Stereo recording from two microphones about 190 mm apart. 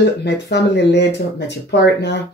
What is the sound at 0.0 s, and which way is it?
Speech, 65° left (ahead or behind).